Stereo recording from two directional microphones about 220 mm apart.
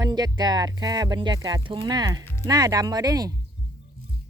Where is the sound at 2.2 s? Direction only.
10° left (ahead or behind).